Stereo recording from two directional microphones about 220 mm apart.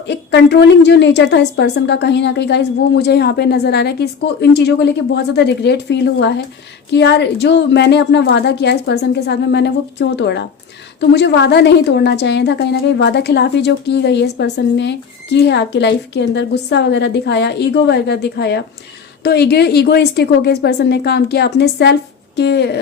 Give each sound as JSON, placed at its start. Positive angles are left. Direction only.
{"t": 0.1, "sound": "a woman's voice", "side_deg": 50}